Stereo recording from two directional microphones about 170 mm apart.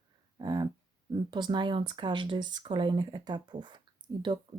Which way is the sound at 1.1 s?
25° right (ahead or behind).